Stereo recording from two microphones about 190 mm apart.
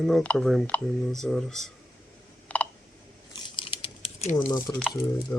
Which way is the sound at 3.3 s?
30° left (ahead or behind).